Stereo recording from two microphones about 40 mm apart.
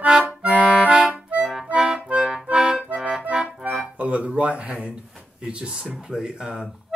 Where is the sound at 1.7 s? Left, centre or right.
Centre.